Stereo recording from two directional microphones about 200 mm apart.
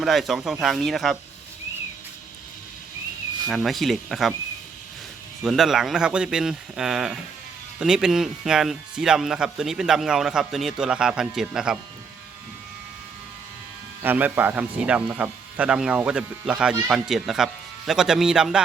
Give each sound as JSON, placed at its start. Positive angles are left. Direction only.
{"t": 0.0, "sound": "speech", "side_deg": 0}
{"t": 3.5, "sound": "speech", "side_deg": 0}
{"t": 5.4, "sound": "speech", "side_deg": 0}
{"t": 14.0, "sound": "speech", "side_deg": -10}